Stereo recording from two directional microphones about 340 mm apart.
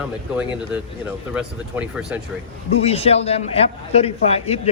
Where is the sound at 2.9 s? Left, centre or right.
Centre.